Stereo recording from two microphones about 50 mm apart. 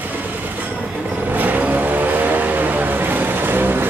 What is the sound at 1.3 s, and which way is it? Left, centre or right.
Vehicle, right.